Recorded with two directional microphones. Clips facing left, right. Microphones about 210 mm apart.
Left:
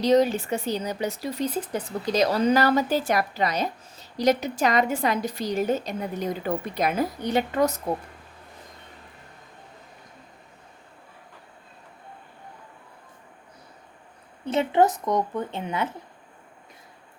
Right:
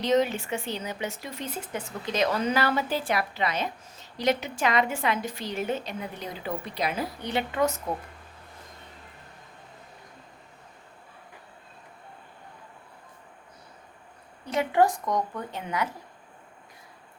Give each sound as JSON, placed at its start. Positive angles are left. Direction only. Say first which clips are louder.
{"t": 0.0, "sound": "speech", "louder": "left 4 dB", "side_deg": 35}
{"t": 14.4, "sound": "a woman's voice", "louder": "left 2 dB", "side_deg": 25}